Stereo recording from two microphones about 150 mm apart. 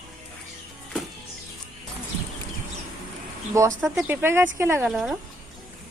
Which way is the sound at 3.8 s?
10° right (ahead or behind).